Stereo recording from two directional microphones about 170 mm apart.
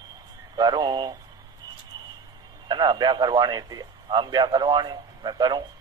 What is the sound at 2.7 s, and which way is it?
A man's voice, 25° right (ahead or behind).